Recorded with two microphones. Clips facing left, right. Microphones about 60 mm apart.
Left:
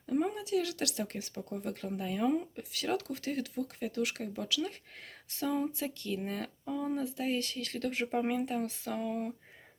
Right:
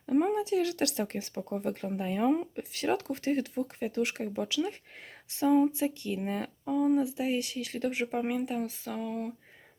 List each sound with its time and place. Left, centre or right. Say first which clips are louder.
0.0 s speech: right 6 dB; right; by 9.3 s centre